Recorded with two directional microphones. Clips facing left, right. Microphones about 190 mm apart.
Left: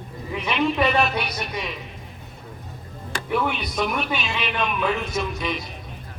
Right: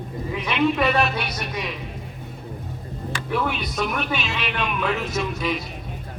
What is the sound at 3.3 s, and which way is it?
A man's voice, centre (ahead or behind).